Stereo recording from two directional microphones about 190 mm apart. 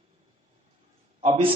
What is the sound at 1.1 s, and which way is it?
Speech, 30° right (ahead or behind).